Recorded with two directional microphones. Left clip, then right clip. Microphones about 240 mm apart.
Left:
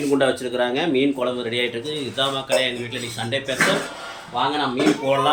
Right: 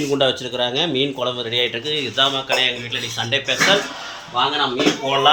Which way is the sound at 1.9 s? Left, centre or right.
Centre.